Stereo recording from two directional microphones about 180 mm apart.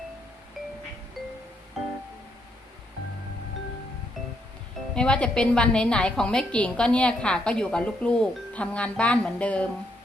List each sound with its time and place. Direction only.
4.9 s a woman's voice: 5° left (ahead or behind)